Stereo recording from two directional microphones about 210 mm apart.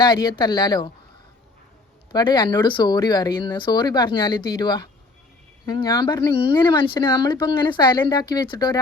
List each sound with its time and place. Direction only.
0.0 s speech: 20° left (ahead or behind)
2.1 s speech: 20° left (ahead or behind)